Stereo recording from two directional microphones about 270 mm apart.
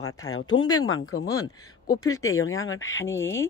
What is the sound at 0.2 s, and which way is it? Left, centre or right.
Speech, left.